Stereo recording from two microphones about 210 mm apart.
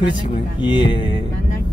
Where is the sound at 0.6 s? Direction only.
20° left (ahead or behind).